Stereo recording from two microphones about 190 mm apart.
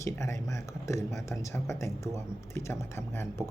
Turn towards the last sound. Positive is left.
turn(degrees=15)  # may be behind; listen again after turning